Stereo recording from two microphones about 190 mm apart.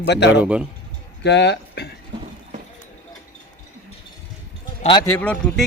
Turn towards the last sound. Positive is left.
turn(degrees=5)  # may be behind; listen again after turning